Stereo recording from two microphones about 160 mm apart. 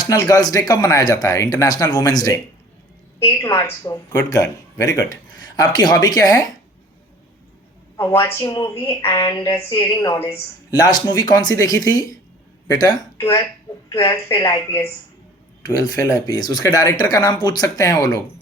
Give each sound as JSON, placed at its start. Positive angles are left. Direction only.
{"t": 0.0, "sound": "speech", "side_deg": 20}
{"t": 7.9, "sound": "a woman's voice", "side_deg": 15}
{"t": 8.5, "sound": "speech", "side_deg": 30}
{"t": 8.8, "sound": "a woman's voice", "side_deg": 15}
{"t": 9.2, "sound": "a woman's voice", "side_deg": 35}
{"t": 9.6, "sound": "a woman's voice", "side_deg": 15}
{"t": 9.8, "sound": "a woman's voice", "side_deg": 30}
{"t": 15.6, "sound": "speech", "side_deg": 20}